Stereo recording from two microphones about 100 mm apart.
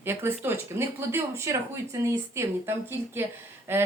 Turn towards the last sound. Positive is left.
turn(degrees=-25)  # may be behind; listen again after turning